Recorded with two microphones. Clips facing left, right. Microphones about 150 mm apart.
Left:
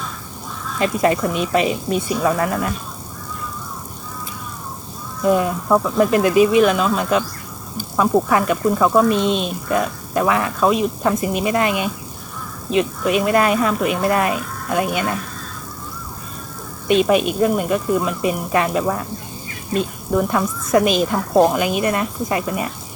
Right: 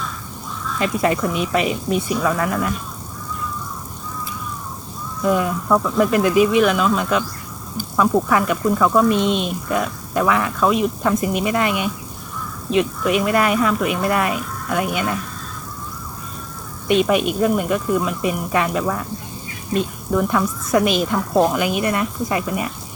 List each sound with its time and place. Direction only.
0.8 s speech: 30° left (ahead or behind)
5.2 s speech: 30° left (ahead or behind)
16.9 s speech: 25° left (ahead or behind)